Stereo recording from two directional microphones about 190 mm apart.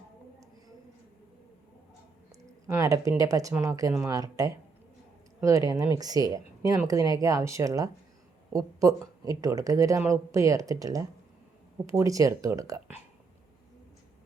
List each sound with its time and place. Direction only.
2.6 s speech: 15° right (ahead or behind)